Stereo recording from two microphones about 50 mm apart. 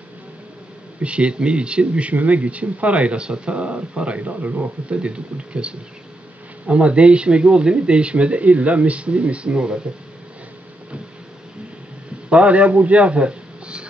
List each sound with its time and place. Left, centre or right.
1.0 s speech: right
4.9 s speech: right
12.3 s a man's voice: right